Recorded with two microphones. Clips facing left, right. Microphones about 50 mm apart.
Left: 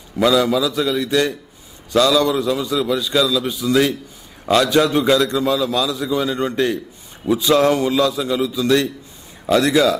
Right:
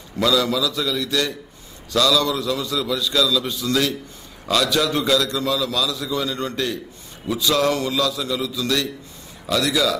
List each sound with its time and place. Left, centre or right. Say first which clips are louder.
0.2 s a man's voice: left 4 dB; left